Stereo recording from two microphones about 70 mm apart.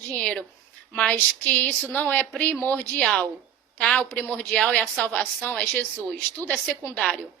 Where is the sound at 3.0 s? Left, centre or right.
Centre.